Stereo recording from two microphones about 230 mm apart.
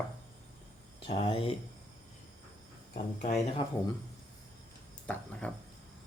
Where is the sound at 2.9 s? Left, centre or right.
Left.